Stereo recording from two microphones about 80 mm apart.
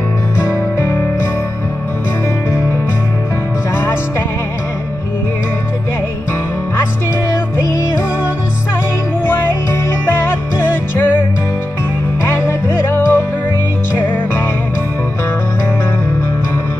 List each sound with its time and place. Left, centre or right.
0.4 s music: left
6.8 s music: left
9.8 s music: left
12.3 s music: left